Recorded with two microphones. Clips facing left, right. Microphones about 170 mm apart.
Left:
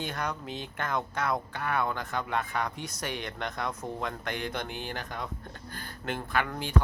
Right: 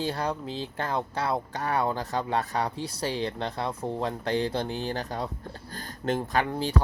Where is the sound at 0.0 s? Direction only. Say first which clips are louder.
Right 5 dB; 30° right (ahead or behind).